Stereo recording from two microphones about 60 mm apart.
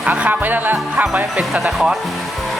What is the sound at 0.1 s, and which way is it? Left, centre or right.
Speech, right.